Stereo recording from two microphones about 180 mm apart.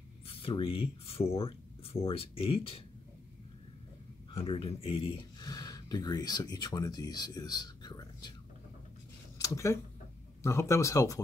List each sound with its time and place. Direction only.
0.3 s speech: 30° left (ahead or behind)
4.3 s speech: 30° left (ahead or behind)
9.4 s speech: 15° left (ahead or behind)